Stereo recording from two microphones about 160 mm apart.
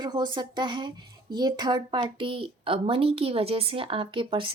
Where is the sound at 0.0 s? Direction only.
30° right (ahead or behind).